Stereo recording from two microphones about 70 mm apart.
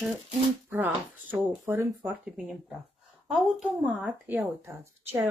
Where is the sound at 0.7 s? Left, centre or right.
Right.